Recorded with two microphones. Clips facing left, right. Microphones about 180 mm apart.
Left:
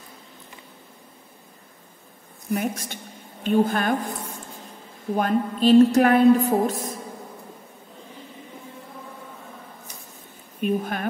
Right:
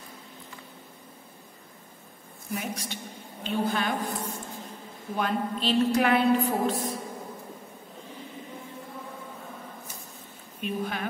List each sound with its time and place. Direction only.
2.5 s a woman's voice: 50° left (ahead or behind)
5.1 s a woman's voice: 45° left (ahead or behind)
10.6 s a woman's voice: 50° left (ahead or behind)